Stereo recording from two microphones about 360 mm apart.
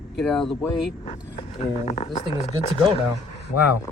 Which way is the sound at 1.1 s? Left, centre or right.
Centre.